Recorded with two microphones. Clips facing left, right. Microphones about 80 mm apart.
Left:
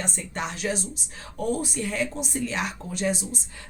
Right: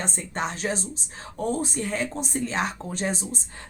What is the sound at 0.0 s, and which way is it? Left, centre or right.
Speech, right.